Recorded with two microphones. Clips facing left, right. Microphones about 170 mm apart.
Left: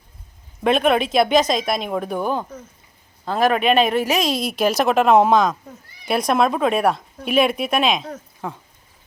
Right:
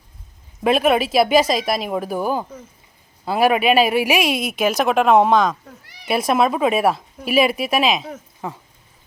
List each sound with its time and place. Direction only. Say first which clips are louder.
0.6 s speech: right 1 dB; 5° right (ahead or behind)
5.8 s cat: right 3 dB; 80° right
6.1 s speech: right 1 dB; 5° right (ahead or behind)